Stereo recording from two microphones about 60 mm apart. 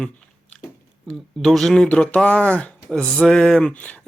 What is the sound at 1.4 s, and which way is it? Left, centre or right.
Speech, centre.